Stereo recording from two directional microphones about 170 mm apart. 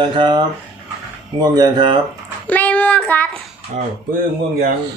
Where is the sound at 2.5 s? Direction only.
10° left (ahead or behind).